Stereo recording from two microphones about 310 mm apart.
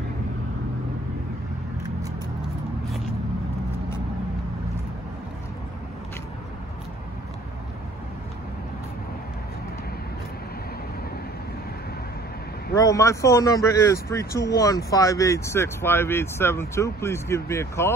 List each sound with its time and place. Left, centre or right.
12.7 s speech: centre